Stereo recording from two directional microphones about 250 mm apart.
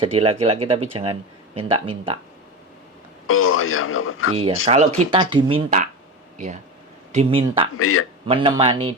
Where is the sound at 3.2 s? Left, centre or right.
Left.